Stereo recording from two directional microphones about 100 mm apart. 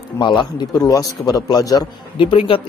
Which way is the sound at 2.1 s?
60° left (ahead or behind).